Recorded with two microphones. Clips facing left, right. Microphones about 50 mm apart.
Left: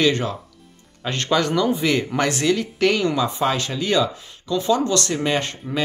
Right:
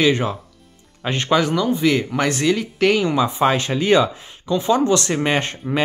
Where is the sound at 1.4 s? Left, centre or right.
Centre.